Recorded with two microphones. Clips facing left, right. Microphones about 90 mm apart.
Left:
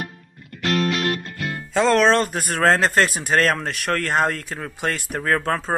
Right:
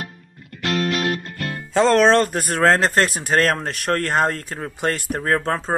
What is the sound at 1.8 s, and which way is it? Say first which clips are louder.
Speech: right 2 dB; 40° right (ahead or behind).